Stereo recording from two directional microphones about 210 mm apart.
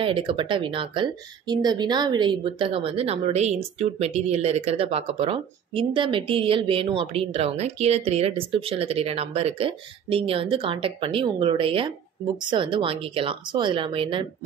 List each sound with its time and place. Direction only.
0.0 s a woman's voice: 25° right (ahead or behind)